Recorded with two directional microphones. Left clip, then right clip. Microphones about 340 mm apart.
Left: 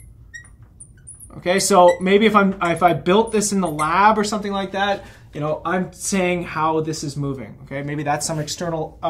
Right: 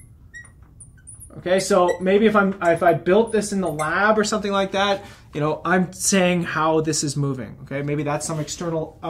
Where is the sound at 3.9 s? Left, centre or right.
Left.